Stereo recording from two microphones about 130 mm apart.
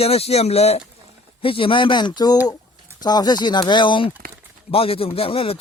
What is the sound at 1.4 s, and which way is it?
Speech, 40° left (ahead or behind).